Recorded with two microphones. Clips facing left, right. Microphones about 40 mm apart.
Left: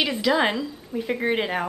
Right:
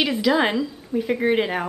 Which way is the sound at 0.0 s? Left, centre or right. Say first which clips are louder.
Right 2 dB; centre.